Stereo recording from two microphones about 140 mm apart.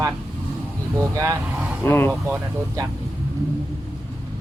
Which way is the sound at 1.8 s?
15° left (ahead or behind).